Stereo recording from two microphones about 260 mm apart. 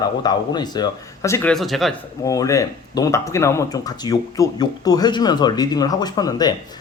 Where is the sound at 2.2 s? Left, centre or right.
Centre.